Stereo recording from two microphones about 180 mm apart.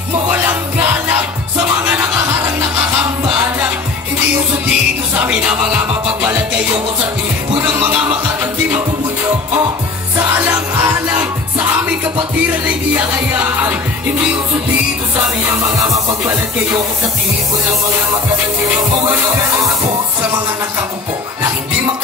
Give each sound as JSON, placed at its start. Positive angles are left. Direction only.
{"t": 0.3, "sound": "music", "side_deg": -10}
{"t": 1.9, "sound": "music", "side_deg": -10}
{"t": 7.5, "sound": "music", "side_deg": -25}
{"t": 7.9, "sound": "music", "side_deg": -10}
{"t": 10.1, "sound": "music", "side_deg": -15}
{"t": 12.4, "sound": "music", "side_deg": -10}
{"t": 15.1, "sound": "music", "side_deg": -15}
{"t": 18.6, "sound": "music", "side_deg": -20}